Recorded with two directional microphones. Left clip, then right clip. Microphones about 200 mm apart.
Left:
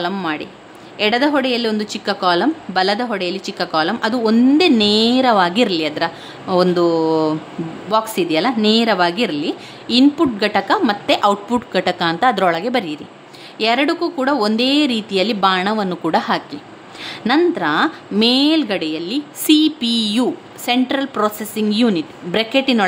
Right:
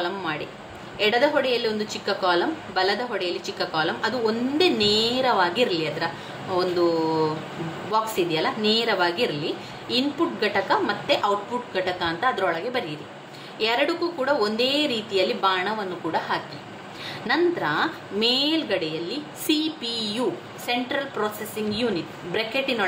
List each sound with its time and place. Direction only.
0.0 s a woman's voice: 60° left (ahead or behind)